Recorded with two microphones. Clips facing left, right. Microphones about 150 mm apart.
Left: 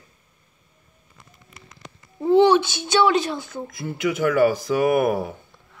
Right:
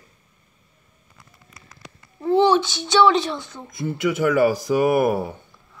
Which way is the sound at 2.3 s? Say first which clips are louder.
Left 2 dB; 15° left (ahead or behind).